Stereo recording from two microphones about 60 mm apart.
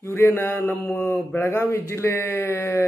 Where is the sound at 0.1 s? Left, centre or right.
Left.